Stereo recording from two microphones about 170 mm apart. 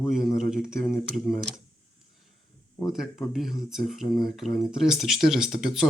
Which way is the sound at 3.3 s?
Centre (ahead or behind).